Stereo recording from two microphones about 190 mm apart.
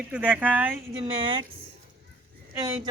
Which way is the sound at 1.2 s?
25° right (ahead or behind).